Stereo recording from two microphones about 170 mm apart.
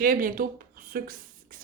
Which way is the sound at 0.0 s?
55° right (ahead or behind).